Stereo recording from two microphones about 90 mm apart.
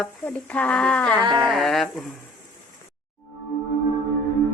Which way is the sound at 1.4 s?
5° left (ahead or behind).